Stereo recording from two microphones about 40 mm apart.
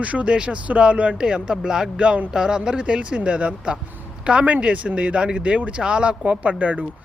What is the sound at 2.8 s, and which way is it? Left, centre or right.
Speech, right.